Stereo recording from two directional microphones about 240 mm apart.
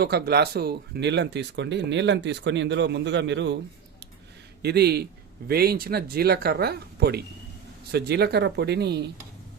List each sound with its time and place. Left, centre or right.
0.0 s speech: right
4.6 s speech: right